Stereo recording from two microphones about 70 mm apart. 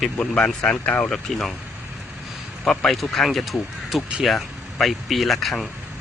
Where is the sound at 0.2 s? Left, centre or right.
Centre.